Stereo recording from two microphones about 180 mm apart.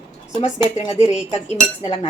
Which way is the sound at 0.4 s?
35° left (ahead or behind).